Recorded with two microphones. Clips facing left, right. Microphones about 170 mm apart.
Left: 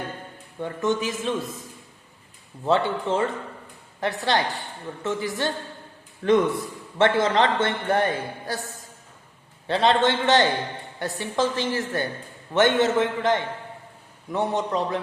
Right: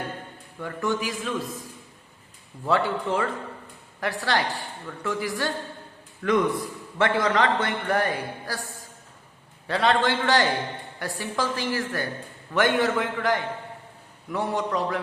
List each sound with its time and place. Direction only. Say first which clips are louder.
0.6 s a man's voice: left 3 dB; 20° left (ahead or behind)
2.6 s a man's voice: left 2 dB; 25° left (ahead or behind)
9.6 s a man's voice: left 2 dB; 25° left (ahead or behind)